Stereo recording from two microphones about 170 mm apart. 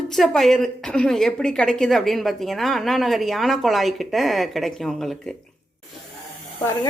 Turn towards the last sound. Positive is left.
turn(degrees=25)  # may be behind; listen again after turning